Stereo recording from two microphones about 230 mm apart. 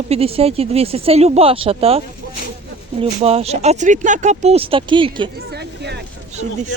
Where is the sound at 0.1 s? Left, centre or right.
Right.